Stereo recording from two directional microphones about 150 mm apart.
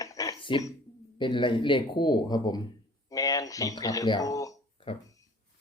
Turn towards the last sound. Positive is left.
turn(degrees=35)  # may be behind; listen again after turning